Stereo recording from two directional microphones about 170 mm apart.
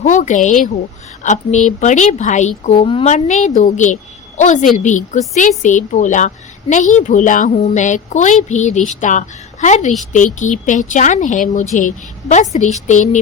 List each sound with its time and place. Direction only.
0.0 s a woman's voice: 45° left (ahead or behind)
2.7 s a woman's voice: 30° left (ahead or behind)
3.1 s a woman's voice: 45° left (ahead or behind)